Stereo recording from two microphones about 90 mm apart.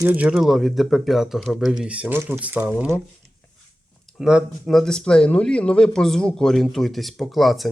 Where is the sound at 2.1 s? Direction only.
25° right (ahead or behind).